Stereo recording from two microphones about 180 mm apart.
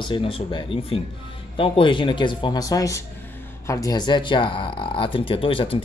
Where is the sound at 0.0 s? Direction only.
30° left (ahead or behind).